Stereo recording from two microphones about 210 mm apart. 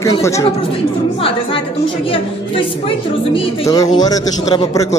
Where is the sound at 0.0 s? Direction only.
15° left (ahead or behind).